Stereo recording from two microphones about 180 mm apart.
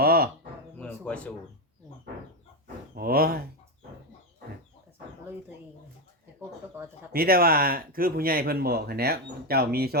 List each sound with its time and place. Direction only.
0.0 s a sound: 55° right (ahead or behind)
0.8 s bird: 5° left (ahead or behind)
2.9 s speech: 55° right (ahead or behind)
6.8 s bird: 10° right (ahead or behind)
7.1 s speech: 55° right (ahead or behind)